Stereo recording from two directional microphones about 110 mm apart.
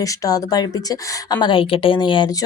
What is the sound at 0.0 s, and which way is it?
A woman's voice, 30° left (ahead or behind).